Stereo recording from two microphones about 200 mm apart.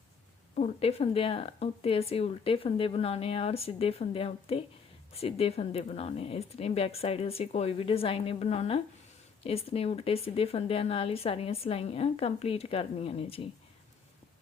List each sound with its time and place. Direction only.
0.5 s speech: 30° left (ahead or behind)